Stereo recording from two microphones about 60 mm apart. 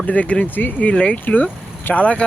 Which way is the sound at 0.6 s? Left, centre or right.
Left.